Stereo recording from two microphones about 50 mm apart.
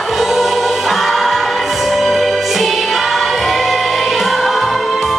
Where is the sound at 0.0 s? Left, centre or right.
Centre.